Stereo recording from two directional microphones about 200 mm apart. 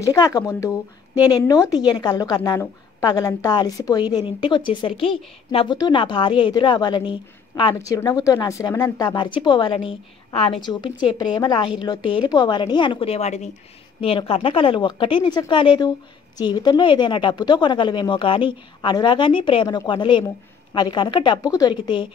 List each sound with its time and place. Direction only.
0.0 s a woman's voice: 20° left (ahead or behind)